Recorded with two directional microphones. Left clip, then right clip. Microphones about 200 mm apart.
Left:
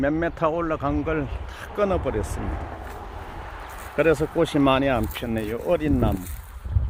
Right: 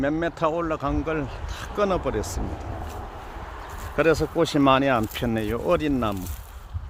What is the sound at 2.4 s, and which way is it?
Speech, 25° left (ahead or behind).